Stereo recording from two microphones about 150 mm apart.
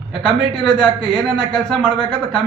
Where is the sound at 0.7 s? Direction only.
5° left (ahead or behind).